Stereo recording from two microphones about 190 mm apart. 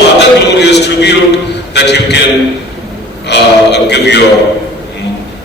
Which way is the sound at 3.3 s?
65° left (ahead or behind).